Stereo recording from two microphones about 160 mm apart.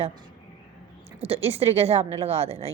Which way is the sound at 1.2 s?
40° right (ahead or behind).